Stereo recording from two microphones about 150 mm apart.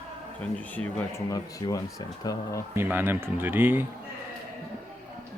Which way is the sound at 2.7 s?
15° right (ahead or behind).